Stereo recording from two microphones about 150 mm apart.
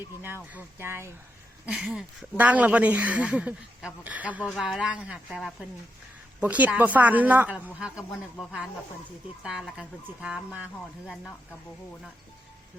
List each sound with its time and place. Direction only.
0.5 s speech: 15° right (ahead or behind)
4.4 s speech: centre (ahead or behind)